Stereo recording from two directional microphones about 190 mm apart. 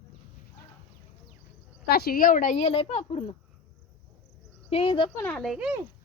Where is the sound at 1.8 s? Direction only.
55° left (ahead or behind); by 3.4 s 30° left (ahead or behind).